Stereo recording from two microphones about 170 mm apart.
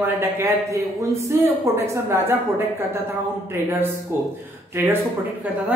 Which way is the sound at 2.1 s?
15° right (ahead or behind).